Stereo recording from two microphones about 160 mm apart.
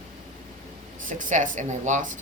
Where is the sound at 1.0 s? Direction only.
55° right (ahead or behind).